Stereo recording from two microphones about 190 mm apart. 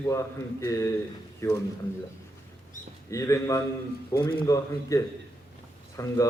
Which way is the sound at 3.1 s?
15° left (ahead or behind).